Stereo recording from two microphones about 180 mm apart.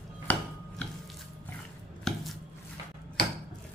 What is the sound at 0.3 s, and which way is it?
Chopping, 10° left (ahead or behind).